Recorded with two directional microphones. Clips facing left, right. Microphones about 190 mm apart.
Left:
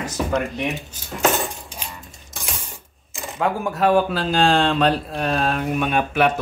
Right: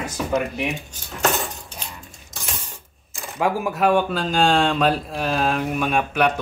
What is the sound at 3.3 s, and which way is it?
Speech, 5° right (ahead or behind).